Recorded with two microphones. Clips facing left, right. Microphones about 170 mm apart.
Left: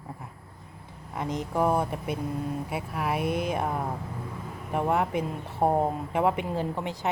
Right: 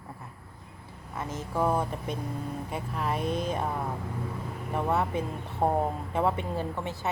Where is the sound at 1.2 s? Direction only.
15° left (ahead or behind).